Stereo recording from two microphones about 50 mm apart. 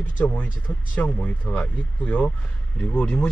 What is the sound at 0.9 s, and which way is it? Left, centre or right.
Speech, left.